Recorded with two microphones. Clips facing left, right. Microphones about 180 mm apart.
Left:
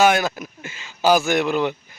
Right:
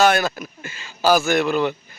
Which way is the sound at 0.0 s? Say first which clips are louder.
Even; 15° left (ahead or behind).